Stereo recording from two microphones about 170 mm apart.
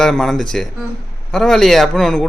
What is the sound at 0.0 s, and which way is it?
Speech, centre (ahead or behind).